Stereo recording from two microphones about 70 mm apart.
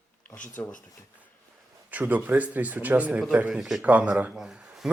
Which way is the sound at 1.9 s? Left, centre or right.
Right.